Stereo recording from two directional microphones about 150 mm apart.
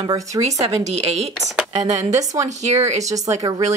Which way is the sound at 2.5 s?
50° right (ahead or behind).